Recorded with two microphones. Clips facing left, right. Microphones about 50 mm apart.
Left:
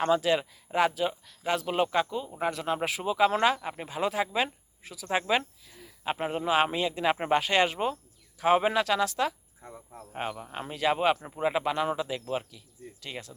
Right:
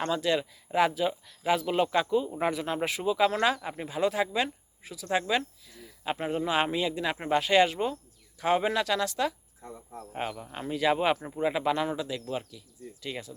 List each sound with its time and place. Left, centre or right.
0.2 s speech: centre
1.6 s speech: centre
4.3 s speech: centre
4.8 s speech: centre
5.0 s speech: centre
6.6 s speech: centre
7.0 s speech: left
7.3 s speech: centre
10.8 s speech: centre
11.3 s speech: centre
11.9 s speech: centre
13.0 s speech: centre